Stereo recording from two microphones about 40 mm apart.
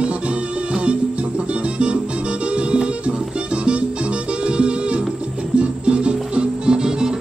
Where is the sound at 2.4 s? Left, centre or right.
Right.